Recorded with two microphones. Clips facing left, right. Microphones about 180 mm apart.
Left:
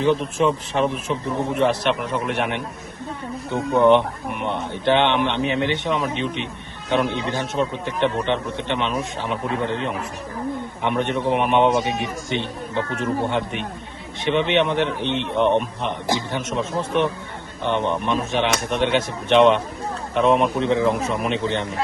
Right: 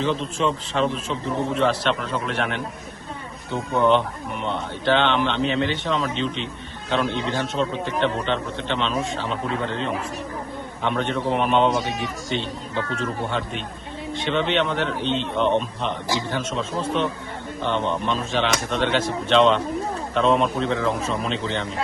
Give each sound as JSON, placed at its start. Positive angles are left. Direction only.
{"t": 0.0, "sound": "a man's voice", "side_deg": 15}
{"t": 14.3, "sound": "a man's voice", "side_deg": 15}